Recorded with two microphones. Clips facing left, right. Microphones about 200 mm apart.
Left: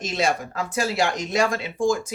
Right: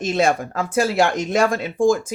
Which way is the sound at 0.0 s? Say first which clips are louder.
Right 5 dB; 50° right (ahead or behind).